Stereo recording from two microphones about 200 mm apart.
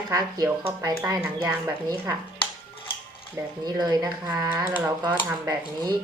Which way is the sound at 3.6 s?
20° right (ahead or behind).